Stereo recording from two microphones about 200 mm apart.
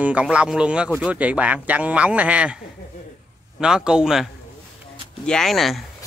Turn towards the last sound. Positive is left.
turn(degrees=0)  # may be behind; listen again after turning